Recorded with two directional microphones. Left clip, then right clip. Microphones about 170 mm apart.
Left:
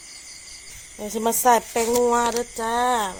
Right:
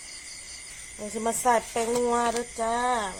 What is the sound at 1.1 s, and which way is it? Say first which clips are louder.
Speech: left 6 dB; 65° left (ahead or behind).